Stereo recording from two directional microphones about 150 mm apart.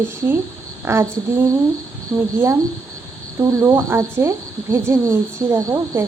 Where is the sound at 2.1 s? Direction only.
10° right (ahead or behind).